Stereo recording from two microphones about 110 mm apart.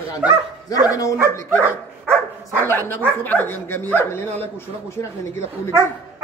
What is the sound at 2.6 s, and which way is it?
Speech, 20° left (ahead or behind).